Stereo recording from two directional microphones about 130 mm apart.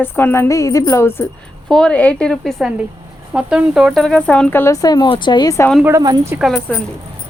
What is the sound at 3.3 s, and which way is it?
Speech, 10° right (ahead or behind).